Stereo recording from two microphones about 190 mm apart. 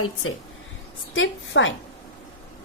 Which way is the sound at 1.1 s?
80° left.